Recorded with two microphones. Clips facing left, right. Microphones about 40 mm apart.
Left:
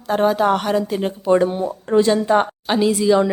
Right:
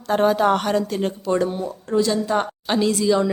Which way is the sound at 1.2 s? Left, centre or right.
Left.